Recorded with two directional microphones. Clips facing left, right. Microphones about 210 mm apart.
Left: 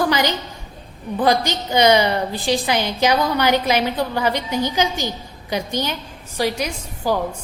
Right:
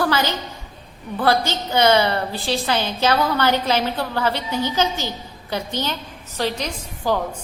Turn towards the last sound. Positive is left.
turn(degrees=10)  # may be behind; listen again after turning